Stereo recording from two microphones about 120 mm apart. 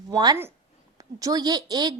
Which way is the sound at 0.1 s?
35° right (ahead or behind).